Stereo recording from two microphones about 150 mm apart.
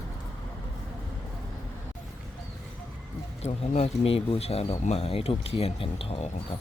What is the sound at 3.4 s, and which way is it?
Speech, 45° left (ahead or behind).